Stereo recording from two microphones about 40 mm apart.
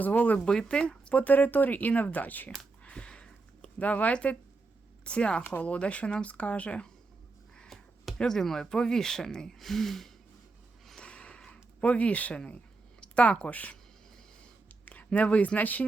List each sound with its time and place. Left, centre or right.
0.0 s speech: left
0.3 s speech: centre
1.1 s speech: left
2.9 s a sound: left
3.8 s speech: left
8.2 s speech: centre
11.0 s snort: left
11.8 s speech: left
14.8 s speech: left